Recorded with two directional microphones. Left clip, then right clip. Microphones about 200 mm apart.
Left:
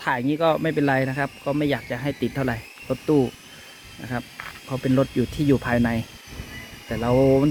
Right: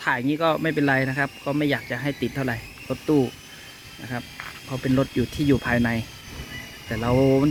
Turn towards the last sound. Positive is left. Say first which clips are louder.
# left 2 dB
turn(degrees=0)  # may be behind; listen again after turning